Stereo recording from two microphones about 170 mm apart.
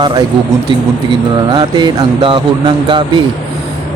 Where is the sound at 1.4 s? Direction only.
25° right (ahead or behind).